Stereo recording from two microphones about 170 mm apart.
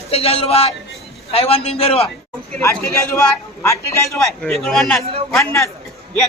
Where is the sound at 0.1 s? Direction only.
35° left (ahead or behind).